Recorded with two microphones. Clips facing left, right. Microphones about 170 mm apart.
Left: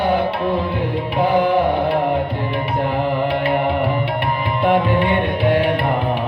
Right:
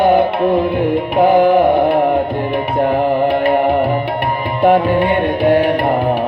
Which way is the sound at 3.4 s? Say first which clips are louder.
Right 5 dB; 45° right (ahead or behind).